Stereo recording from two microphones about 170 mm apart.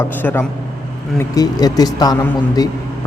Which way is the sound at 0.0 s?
10° left (ahead or behind).